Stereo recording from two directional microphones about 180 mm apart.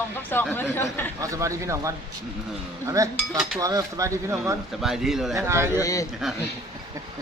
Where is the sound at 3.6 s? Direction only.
20° right (ahead or behind).